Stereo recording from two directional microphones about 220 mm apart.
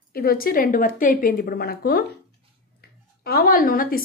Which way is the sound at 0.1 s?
45° left (ahead or behind).